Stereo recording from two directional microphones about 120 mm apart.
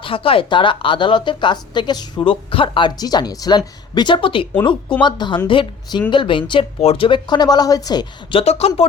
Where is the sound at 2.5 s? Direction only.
45° left (ahead or behind).